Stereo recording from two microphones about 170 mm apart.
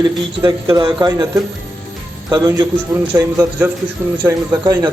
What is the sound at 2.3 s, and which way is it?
A man's voice, 20° right (ahead or behind).